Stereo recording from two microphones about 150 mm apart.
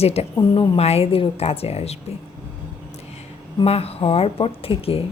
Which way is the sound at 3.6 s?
40° left (ahead or behind).